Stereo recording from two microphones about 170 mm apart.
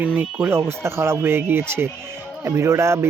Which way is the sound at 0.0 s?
10° right (ahead or behind).